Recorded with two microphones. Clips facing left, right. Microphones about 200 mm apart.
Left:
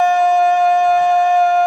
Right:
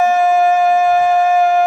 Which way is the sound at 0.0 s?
5° right (ahead or behind).